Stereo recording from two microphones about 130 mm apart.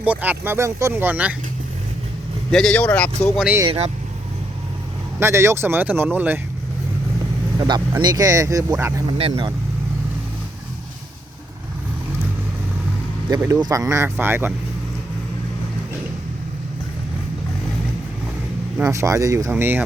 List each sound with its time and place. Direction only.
0.0 s speech: 10° right (ahead or behind)
2.5 s speech: 5° left (ahead or behind)
3.7 s speech: 55° right (ahead or behind)
5.2 s speech: 20° right (ahead or behind)
7.7 s speech: 35° right (ahead or behind)
9.0 s speech: 50° right (ahead or behind)
13.4 s speech: 25° right (ahead or behind)
18.8 s speech: 25° right (ahead or behind)